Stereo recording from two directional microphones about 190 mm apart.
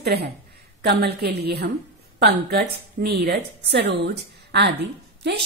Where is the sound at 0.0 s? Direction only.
60° right (ahead or behind).